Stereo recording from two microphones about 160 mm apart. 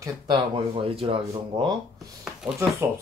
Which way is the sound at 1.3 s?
25° right (ahead or behind).